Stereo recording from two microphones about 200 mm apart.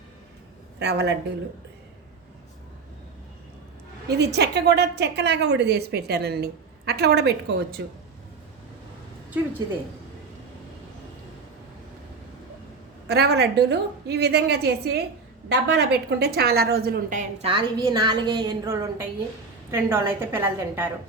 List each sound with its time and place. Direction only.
0.8 s a woman's voice: 55° right (ahead or behind)
4.1 s a woman's voice: 55° right (ahead or behind)
13.1 s a woman's voice: 55° right (ahead or behind); by 20.9 s 10° right (ahead or behind)